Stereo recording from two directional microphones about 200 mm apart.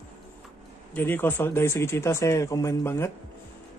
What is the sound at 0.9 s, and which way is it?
Speech, 10° left (ahead or behind).